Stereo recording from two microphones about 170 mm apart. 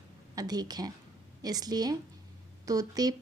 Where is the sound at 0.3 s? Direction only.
25° right (ahead or behind).